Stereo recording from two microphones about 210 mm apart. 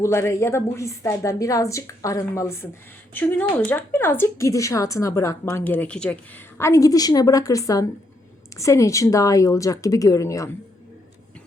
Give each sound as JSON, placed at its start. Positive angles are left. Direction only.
{"t": 0.0, "sound": "speech", "side_deg": 15}